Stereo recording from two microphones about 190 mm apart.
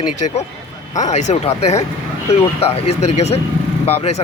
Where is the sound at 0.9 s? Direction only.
40° left (ahead or behind).